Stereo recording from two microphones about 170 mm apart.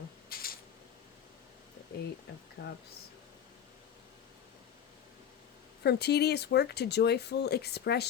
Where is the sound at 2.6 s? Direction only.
90° left.